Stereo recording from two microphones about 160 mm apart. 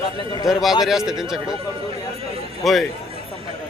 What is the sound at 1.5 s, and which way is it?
Speech, 35° right (ahead or behind).